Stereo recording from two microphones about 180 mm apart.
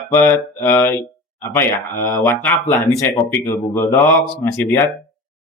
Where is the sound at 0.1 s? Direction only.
10° left (ahead or behind).